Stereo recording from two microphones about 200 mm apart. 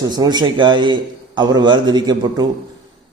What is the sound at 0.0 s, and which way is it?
A man's voice, 20° right (ahead or behind).